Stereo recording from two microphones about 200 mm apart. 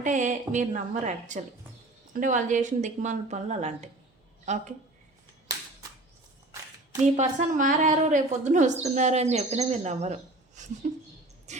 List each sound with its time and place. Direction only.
0.0 s speech: 40° right (ahead or behind)
7.0 s speech: 35° right (ahead or behind)
11.5 s a sound: 35° right (ahead or behind)